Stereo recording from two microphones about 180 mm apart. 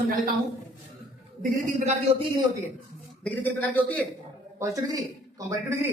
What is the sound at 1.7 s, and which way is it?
Speech, 40° right (ahead or behind).